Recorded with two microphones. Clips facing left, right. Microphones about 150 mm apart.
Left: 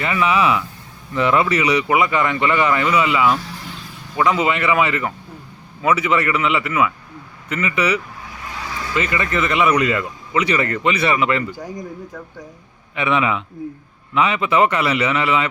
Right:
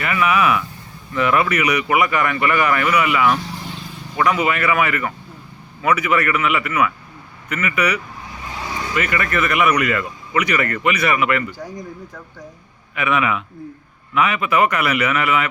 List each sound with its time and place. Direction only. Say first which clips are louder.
0.0 s speech: even; 25° left (ahead or behind)
13.0 s speech: left 1 dB; 25° left (ahead or behind)